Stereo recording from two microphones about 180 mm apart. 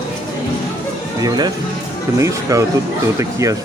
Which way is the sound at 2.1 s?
15° right (ahead or behind).